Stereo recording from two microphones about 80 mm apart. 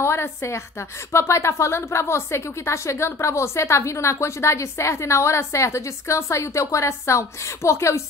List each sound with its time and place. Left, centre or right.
0.0 s a woman's voice: left